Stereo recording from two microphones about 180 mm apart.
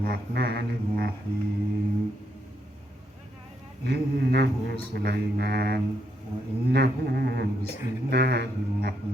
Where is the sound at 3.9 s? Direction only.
65° right (ahead or behind).